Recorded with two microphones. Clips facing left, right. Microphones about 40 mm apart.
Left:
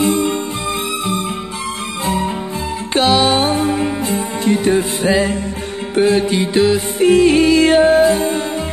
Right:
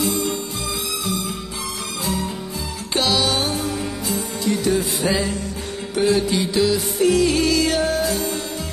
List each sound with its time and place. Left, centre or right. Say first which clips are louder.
0.0 s music: left 7 dB; left
2.9 s music: left 7 dB; left